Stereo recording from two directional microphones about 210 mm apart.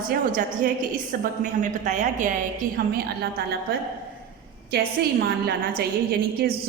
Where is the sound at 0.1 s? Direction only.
40° right (ahead or behind).